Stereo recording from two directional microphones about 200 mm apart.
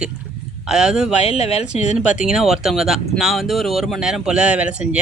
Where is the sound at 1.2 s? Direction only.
30° left (ahead or behind).